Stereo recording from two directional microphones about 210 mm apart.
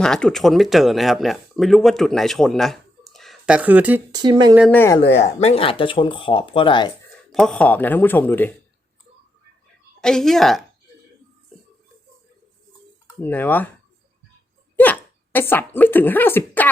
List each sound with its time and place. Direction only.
0.0 s speech: 5° left (ahead or behind)
4.1 s speech: 20° right (ahead or behind)
4.7 s a man's voice: 10° left (ahead or behind)
4.9 s speech: 30° left (ahead or behind)
7.3 s a man's voice: 5° left (ahead or behind)
10.0 s speech: centre (ahead or behind)
13.1 s a man's voice: 10° left (ahead or behind)
14.8 s speech: 10° left (ahead or behind)